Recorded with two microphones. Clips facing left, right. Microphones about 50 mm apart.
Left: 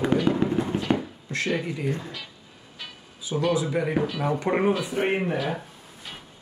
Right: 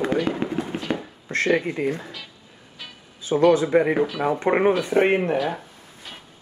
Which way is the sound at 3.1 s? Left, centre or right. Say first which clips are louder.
Right 6 dB; right.